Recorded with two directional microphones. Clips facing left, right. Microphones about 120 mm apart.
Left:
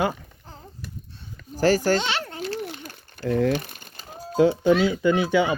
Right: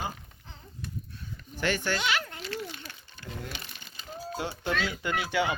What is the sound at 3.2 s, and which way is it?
Speech, 90° left.